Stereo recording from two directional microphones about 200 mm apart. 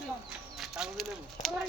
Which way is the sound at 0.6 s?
Centre (ahead or behind).